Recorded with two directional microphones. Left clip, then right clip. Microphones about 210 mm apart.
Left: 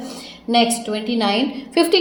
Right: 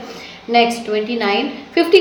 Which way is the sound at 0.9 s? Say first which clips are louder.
Right 3 dB; 40° left (ahead or behind).